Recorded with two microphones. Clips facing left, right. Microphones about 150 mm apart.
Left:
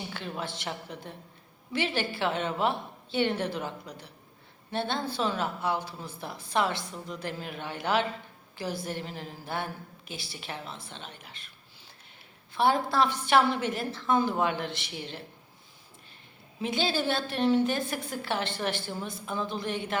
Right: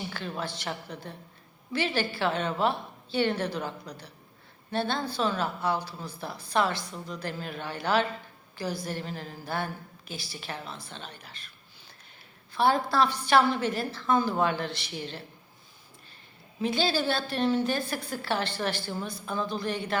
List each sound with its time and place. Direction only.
0.1 s a woman's voice: 20° left (ahead or behind)
12.5 s a woman's voice: 20° left (ahead or behind)
16.6 s a woman's voice: 20° left (ahead or behind)